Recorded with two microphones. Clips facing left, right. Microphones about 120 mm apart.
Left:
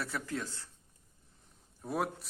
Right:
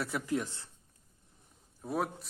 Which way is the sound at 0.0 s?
15° right (ahead or behind).